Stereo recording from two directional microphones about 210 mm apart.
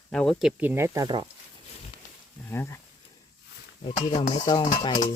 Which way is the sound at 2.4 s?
10° left (ahead or behind).